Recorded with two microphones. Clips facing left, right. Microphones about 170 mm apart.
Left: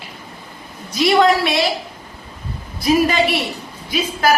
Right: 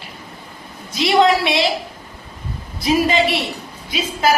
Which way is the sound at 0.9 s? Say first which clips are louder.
Left 1 dB; 25° right (ahead or behind).